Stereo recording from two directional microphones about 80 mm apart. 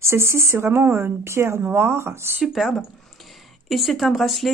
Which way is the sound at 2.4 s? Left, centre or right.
Centre.